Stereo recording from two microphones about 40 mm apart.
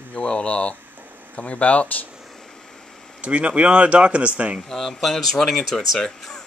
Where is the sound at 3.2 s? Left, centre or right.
Right.